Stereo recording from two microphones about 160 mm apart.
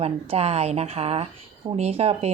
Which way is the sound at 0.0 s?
40° right (ahead or behind).